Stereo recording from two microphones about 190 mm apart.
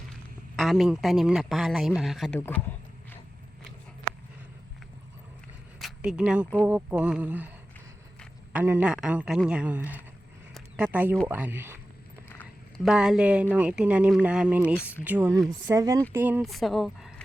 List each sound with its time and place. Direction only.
0.1 s speech: centre (ahead or behind)
2.3 s a sound: 10° left (ahead or behind)
5.8 s speech: 5° right (ahead or behind)
8.5 s speech: 10° right (ahead or behind)
10.5 s a sound: 5° right (ahead or behind)
11.3 s speech: 10° right (ahead or behind)
12.8 s speech: centre (ahead or behind)
15.6 s speech: 15° right (ahead or behind)
16.4 s speech: centre (ahead or behind)